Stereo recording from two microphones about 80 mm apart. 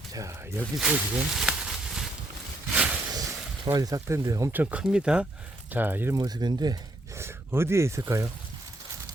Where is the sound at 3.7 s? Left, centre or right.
Right.